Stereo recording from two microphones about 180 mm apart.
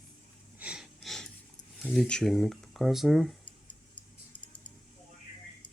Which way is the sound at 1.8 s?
5° left (ahead or behind).